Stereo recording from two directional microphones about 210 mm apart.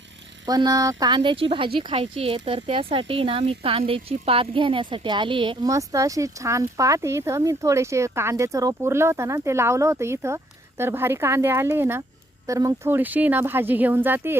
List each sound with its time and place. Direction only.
0.4 s speech: 20° right (ahead or behind)